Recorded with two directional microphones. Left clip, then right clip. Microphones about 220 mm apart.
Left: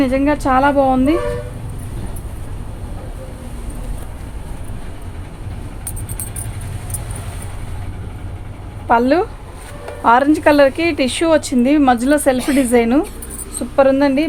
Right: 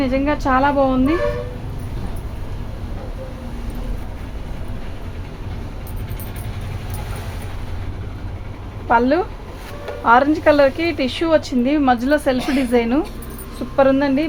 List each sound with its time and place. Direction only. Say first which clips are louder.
0.0 s a woman's voice: left 3 dB; 35° left (ahead or behind)
8.9 s a woman's voice: left 2 dB; 35° left (ahead or behind)